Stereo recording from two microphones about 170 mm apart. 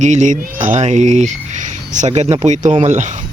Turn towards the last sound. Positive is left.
turn(degrees=-45)  # may be behind; listen again after turning